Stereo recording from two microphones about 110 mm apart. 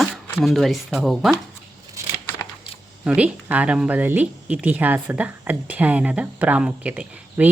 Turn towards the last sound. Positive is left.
turn(degrees=-15)  # may be behind; listen again after turning